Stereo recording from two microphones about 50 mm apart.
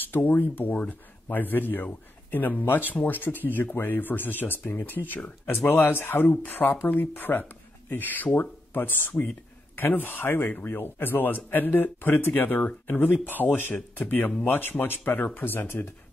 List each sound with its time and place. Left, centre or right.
0.0 s a man's voice: left